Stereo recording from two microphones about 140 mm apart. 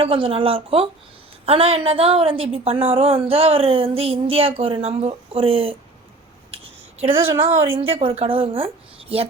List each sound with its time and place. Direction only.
0.0 s a woman's voice: 40° right (ahead or behind)
6.5 s a sound: 45° right (ahead or behind)
7.4 s a woman's voice: 20° right (ahead or behind)
7.8 s a woman's voice: 40° right (ahead or behind)